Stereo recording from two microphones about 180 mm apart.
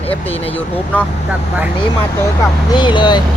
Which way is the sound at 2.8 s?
25° left (ahead or behind).